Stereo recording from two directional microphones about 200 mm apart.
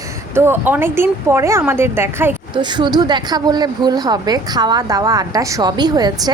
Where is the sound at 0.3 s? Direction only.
10° right (ahead or behind).